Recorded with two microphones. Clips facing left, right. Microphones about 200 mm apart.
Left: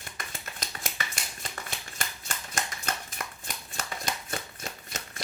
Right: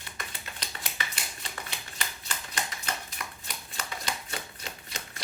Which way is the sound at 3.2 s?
45° left (ahead or behind).